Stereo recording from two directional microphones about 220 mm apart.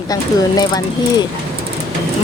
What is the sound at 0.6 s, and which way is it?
Speech, 15° left (ahead or behind).